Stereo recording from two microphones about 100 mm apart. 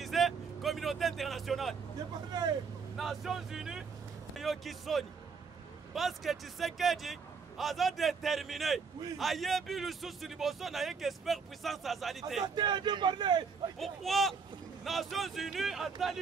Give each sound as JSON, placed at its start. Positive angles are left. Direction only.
{"t": 0.0, "sound": "vehicle", "side_deg": 0}
{"t": 2.3, "sound": "speech", "side_deg": -45}
{"t": 3.0, "sound": "a man's voice", "side_deg": 0}
{"t": 12.5, "sound": "speech", "side_deg": -45}
{"t": 13.7, "sound": "a man's voice", "side_deg": 0}